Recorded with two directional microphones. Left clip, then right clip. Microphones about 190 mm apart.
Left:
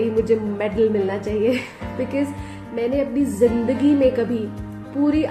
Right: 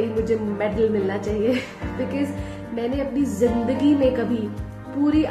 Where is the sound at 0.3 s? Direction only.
15° left (ahead or behind).